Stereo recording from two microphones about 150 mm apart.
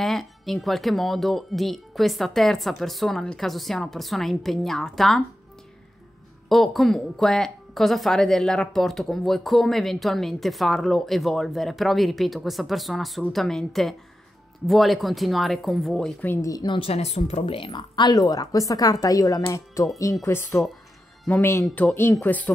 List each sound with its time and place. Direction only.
0.0 s speech: centre (ahead or behind)
6.5 s speech: centre (ahead or behind)
16.4 s speech: 30° left (ahead or behind); by 22.5 s 10° left (ahead or behind)